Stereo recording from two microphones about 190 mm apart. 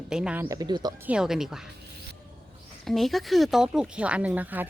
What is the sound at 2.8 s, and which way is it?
Speech, centre (ahead or behind).